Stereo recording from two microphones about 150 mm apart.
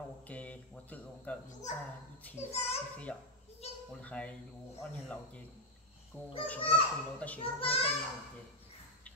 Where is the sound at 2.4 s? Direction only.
45° left (ahead or behind).